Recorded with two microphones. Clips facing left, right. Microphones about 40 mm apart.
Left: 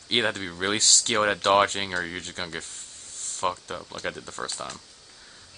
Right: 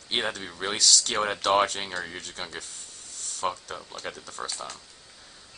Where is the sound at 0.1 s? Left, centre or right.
Left.